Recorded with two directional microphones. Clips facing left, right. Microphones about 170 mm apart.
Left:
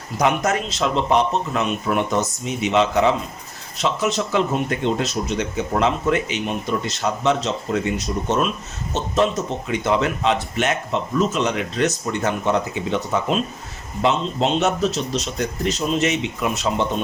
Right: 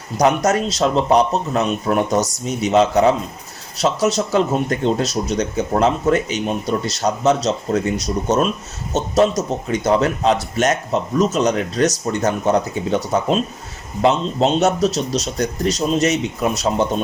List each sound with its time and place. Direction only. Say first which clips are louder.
0.2 s speech: right 4 dB; 40° right (ahead or behind)